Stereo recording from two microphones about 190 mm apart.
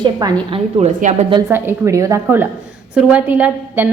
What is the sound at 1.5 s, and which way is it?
A woman's voice, 10° right (ahead or behind).